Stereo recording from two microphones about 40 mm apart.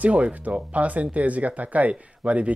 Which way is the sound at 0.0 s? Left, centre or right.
Right.